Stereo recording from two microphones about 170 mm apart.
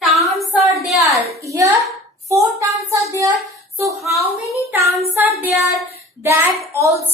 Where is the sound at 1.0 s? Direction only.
20° right (ahead or behind).